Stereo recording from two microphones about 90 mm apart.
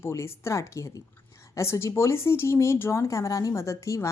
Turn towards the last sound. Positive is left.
turn(degrees=35)  # may be behind; listen again after turning